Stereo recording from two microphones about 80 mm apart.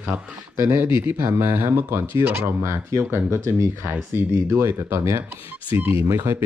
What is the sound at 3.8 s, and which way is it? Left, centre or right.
Speech, right.